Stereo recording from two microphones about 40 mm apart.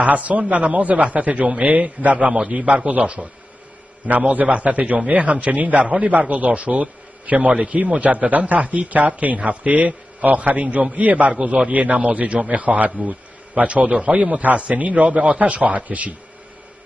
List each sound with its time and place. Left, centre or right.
0.0 s a man's voice: right